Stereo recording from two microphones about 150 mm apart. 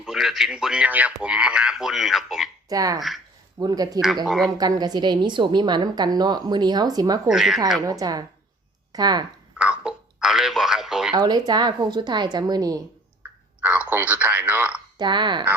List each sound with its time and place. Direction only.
0.0 s speech: centre (ahead or behind)
2.6 s a woman's voice: 25° right (ahead or behind)
4.3 s speech: centre (ahead or behind)
4.5 s a woman's voice: 25° right (ahead or behind)
7.3 s speech: centre (ahead or behind)
7.9 s a woman's voice: 25° right (ahead or behind)
9.6 s a sound: 5° right (ahead or behind)
11.1 s a woman's voice: 25° right (ahead or behind)
13.6 s speech: 10° right (ahead or behind)
14.9 s speech: 30° right (ahead or behind)